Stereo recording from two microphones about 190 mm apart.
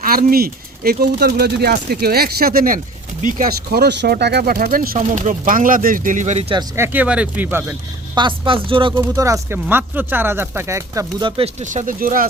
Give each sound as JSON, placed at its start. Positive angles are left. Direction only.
{"t": 0.0, "sound": "speech", "side_deg": -50}
{"t": 6.5, "sound": "speech", "side_deg": -15}
{"t": 8.1, "sound": "speech", "side_deg": -25}
{"t": 9.0, "sound": "speech", "side_deg": -15}